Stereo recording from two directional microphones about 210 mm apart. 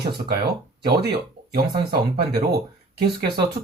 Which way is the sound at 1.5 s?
50° right (ahead or behind).